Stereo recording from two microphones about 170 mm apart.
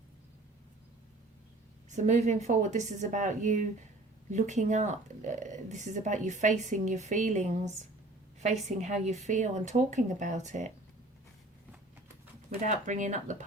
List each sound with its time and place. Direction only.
1.9 s a woman's voice: 45° right (ahead or behind)
12.6 s a woman's voice: 45° right (ahead or behind)